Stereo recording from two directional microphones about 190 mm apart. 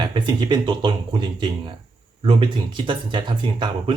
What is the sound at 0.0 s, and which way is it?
Speech, 25° right (ahead or behind).